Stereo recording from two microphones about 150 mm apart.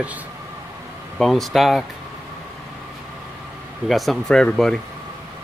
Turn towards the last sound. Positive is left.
turn(degrees=5)  # may be behind; listen again after turning